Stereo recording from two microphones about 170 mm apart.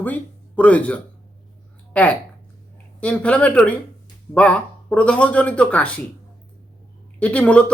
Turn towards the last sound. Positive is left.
turn(degrees=5)  # may be behind; listen again after turning